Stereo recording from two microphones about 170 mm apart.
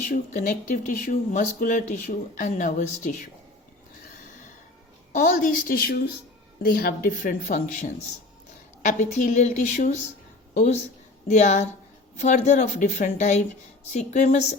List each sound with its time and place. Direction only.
0.0 s speech: 45° left (ahead or behind)
5.1 s speech: 50° left (ahead or behind)
9.0 s speech: 45° left (ahead or behind)